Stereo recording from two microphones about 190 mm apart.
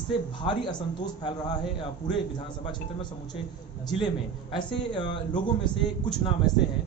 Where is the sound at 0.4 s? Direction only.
25° left (ahead or behind).